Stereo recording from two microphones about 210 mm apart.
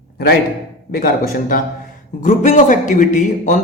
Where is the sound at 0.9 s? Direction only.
45° left (ahead or behind).